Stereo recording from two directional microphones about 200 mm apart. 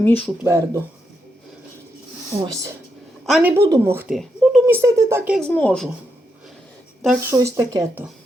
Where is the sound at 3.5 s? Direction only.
15° right (ahead or behind).